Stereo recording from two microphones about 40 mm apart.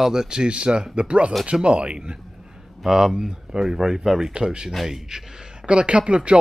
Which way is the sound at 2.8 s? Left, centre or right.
Centre.